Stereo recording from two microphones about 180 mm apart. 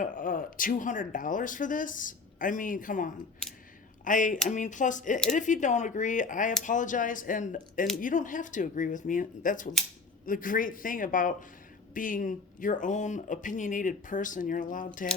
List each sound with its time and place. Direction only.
0.0 s speech: 50° left (ahead or behind)